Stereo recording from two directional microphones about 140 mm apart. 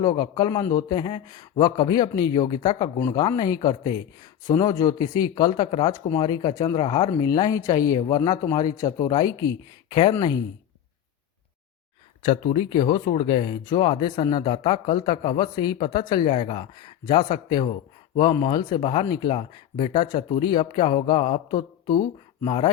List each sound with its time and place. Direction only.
0.0 s speech: 30° left (ahead or behind)
9.9 s speech: 40° left (ahead or behind)
12.2 s speech: 40° left (ahead or behind)
16.3 s speech: 45° left (ahead or behind)
21.5 s speech: 25° left (ahead or behind)
22.4 s speech: 40° left (ahead or behind)